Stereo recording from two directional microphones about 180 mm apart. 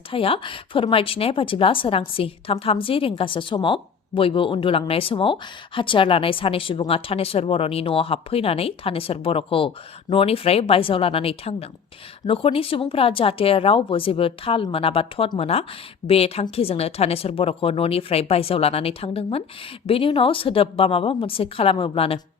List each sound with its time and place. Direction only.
0.1 s speech: 30° left (ahead or behind)